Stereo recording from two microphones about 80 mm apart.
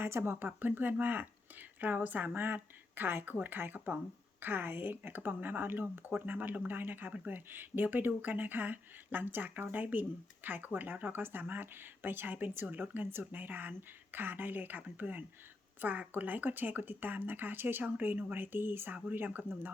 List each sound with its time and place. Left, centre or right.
0.0 s speech: right